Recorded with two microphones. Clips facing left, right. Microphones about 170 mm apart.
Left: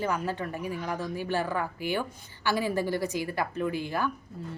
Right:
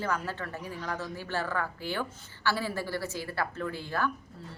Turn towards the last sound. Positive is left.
turn(degrees=15)  # may be behind; listen again after turning